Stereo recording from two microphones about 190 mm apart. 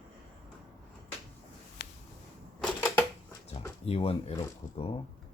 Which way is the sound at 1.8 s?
60° left (ahead or behind).